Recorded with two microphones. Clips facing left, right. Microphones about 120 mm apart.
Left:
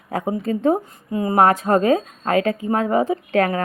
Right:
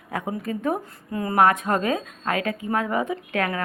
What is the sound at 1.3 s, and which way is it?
A woman's voice, 30° left (ahead or behind).